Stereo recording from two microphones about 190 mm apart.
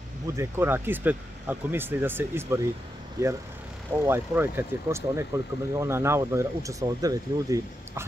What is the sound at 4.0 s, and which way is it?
Speech, 10° right (ahead or behind).